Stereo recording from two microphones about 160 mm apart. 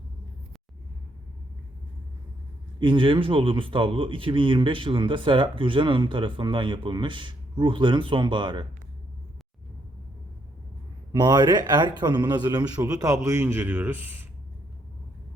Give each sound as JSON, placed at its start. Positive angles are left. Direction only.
{"t": 2.8, "sound": "speech", "side_deg": -30}
{"t": 11.1, "sound": "a man's voice", "side_deg": -25}